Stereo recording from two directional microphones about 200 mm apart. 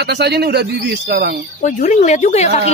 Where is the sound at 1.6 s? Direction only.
35° left (ahead or behind).